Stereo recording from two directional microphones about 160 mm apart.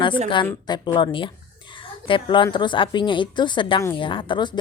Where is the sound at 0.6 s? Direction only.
30° left (ahead or behind).